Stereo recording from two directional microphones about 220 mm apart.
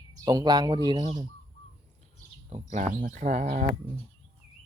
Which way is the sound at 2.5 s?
30° right (ahead or behind).